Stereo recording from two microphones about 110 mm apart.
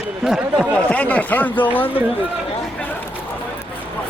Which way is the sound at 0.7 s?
10° left (ahead or behind).